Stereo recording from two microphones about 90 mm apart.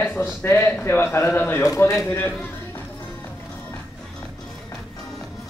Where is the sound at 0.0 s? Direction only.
20° left (ahead or behind).